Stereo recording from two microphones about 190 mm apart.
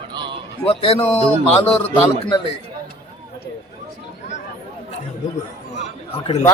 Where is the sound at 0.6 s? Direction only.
30° left (ahead or behind).